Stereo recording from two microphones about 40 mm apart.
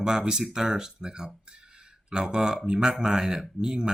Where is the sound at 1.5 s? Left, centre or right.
Right.